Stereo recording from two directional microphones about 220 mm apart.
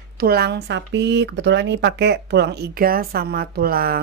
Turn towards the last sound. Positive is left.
turn(degrees=-45)  # may be behind; listen again after turning